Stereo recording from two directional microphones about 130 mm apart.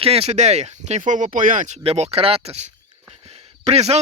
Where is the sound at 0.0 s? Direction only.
50° right (ahead or behind).